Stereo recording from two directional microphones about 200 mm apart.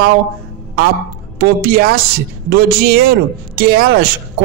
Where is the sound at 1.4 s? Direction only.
50° right (ahead or behind).